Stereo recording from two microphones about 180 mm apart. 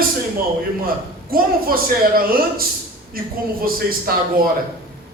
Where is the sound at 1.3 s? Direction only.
55° right (ahead or behind).